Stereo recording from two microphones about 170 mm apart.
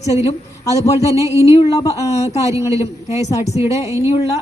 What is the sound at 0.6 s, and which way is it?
Speech, 20° left (ahead or behind).